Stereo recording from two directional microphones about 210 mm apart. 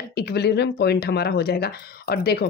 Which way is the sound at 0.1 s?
50° left (ahead or behind).